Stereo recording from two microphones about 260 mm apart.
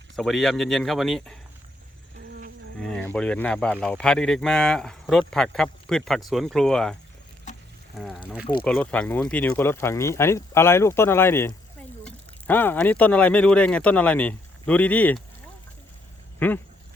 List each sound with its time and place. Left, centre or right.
0.2 s speech: centre
2.1 s a sound: right
2.7 s speech: centre
7.9 s speech: centre
16.4 s speech: centre